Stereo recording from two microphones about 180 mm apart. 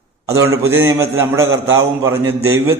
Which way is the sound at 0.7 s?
15° right (ahead or behind).